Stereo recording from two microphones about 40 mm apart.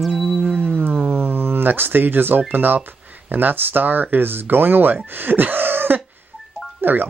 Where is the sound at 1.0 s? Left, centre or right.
Right.